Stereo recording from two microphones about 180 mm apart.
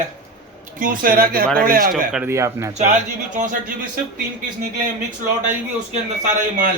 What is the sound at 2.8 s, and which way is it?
Speech, 45° right (ahead or behind).